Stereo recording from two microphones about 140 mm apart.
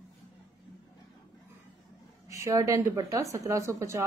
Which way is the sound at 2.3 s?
20° right (ahead or behind).